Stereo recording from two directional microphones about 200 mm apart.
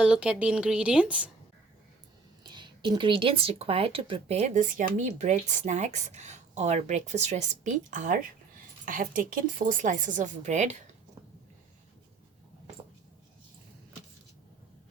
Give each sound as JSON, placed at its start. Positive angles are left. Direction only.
{"t": 0.0, "sound": "speech", "side_deg": -5}
{"t": 2.4, "sound": "speech", "side_deg": -20}